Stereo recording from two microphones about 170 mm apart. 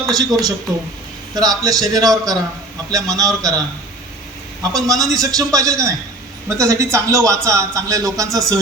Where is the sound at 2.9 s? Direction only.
20° right (ahead or behind).